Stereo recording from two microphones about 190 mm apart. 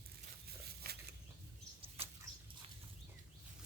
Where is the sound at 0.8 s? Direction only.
55° right (ahead or behind).